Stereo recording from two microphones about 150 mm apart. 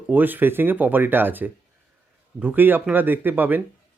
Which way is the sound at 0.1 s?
10° right (ahead or behind).